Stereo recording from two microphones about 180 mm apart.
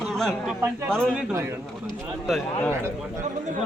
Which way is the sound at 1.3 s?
15° right (ahead or behind).